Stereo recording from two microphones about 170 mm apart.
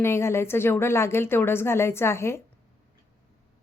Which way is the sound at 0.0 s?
15° left (ahead or behind).